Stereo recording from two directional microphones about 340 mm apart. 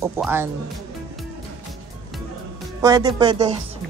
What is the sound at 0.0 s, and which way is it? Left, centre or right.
Speech, centre.